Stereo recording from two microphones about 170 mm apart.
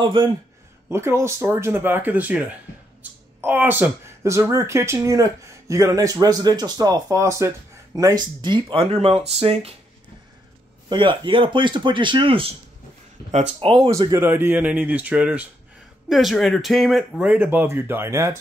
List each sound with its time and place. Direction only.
0.0 s speech: 30° right (ahead or behind)
0.8 s speech: 15° right (ahead or behind); by 9.8 s 35° right (ahead or behind)
10.9 s speech: 30° right (ahead or behind)
13.8 s speech: 20° right (ahead or behind)